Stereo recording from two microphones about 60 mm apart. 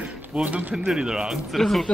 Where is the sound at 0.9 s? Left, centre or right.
Centre.